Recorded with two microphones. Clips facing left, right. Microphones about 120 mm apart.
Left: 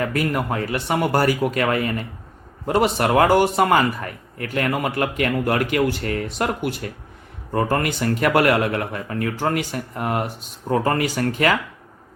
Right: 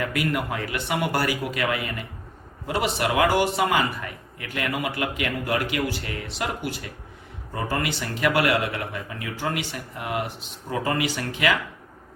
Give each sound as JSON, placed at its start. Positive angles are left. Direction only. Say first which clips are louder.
{"t": 0.0, "sound": "a man's voice", "louder": "left 3 dB", "side_deg": 40}